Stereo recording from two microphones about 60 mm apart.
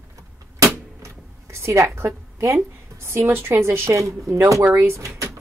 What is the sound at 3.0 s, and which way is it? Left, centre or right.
Speech, right.